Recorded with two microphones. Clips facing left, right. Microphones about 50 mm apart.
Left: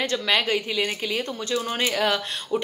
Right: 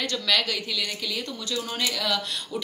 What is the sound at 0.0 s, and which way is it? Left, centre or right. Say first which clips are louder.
Speech: left 3 dB; left.